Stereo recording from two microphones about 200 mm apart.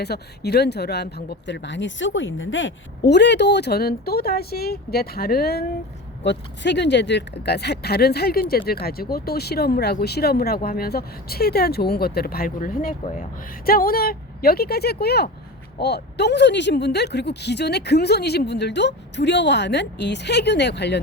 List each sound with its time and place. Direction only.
0.0 s speech: 55° left (ahead or behind)
6.2 s speech: 60° left (ahead or behind)